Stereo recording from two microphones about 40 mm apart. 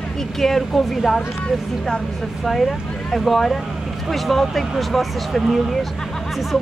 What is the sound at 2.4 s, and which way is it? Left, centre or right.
Speech, centre.